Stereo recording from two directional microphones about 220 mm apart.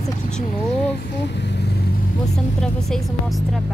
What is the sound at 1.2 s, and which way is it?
Vehicle, 50° left (ahead or behind).